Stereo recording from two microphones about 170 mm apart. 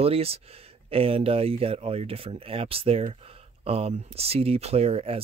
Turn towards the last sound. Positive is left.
turn(degrees=-35)  # may be behind; listen again after turning